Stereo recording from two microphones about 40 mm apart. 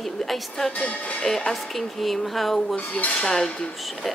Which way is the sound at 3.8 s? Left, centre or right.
Centre.